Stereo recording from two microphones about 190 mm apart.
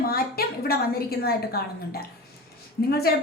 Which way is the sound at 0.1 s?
55° left (ahead or behind).